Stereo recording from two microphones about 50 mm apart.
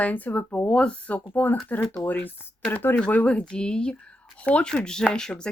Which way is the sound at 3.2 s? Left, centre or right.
Left.